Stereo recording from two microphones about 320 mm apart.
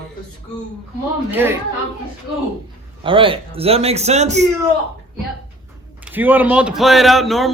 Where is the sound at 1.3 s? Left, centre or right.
Centre.